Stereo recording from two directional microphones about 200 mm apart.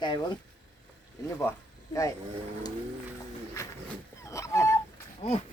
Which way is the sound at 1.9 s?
15° left (ahead or behind).